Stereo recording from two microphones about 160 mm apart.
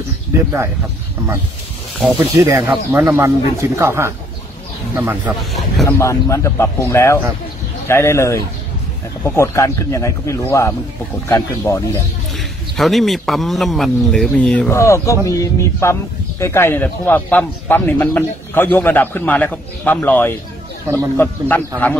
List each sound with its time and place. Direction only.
2.3 s speech: 15° right (ahead or behind)
5.9 s a man's voice: 15° left (ahead or behind)
12.7 s speech: centre (ahead or behind)
14.7 s a man's voice: 20° left (ahead or behind)
20.9 s speech: 15° right (ahead or behind)
21.2 s a man's voice: 10° left (ahead or behind)